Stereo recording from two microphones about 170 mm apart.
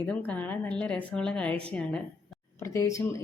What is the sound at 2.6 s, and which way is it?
Speech, 15° left (ahead or behind).